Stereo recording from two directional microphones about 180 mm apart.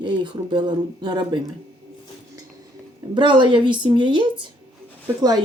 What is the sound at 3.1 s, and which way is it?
Speech, 25° right (ahead or behind).